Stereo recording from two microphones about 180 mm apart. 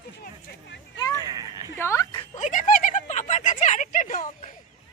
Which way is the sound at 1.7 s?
15° left (ahead or behind).